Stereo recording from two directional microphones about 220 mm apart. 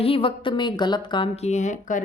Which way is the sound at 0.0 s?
25° left (ahead or behind).